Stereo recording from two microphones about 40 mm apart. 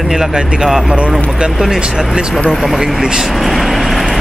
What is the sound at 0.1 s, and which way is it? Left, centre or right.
Speech, centre.